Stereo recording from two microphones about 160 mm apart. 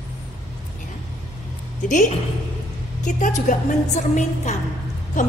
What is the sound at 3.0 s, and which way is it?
A woman's voice, 50° left (ahead or behind).